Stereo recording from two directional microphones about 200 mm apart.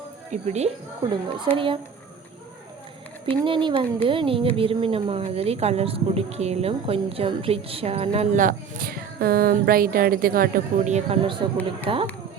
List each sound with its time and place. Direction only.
0.3 s a woman's voice: 35° right (ahead or behind)
3.4 s speech: 25° right (ahead or behind)